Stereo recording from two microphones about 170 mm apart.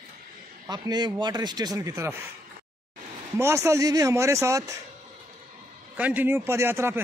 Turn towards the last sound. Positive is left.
turn(degrees=-15)  # may be behind; listen again after turning